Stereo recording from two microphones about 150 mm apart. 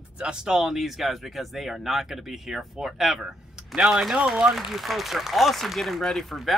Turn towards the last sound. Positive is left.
turn(degrees=0)  # may be behind; listen again after turning